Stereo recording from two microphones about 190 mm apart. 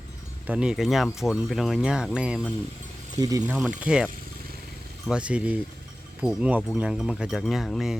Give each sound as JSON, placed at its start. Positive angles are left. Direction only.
{"t": 0.4, "sound": "speech", "side_deg": -5}
{"t": 3.2, "sound": "speech", "side_deg": -20}
{"t": 3.4, "sound": "speech", "side_deg": -5}